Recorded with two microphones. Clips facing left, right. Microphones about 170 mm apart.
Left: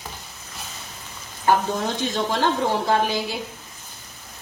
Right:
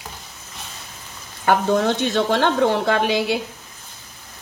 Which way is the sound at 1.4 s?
70° right (ahead or behind).